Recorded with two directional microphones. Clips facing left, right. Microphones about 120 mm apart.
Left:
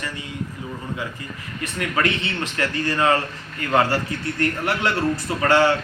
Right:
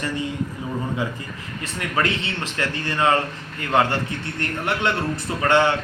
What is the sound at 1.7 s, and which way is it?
A man's voice, 25° right (ahead or behind).